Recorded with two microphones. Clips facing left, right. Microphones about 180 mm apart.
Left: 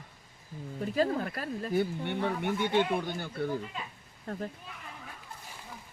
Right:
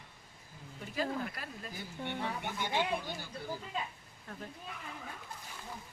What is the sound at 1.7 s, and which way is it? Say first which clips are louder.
Speech: left 12 dB; 60° left (ahead or behind).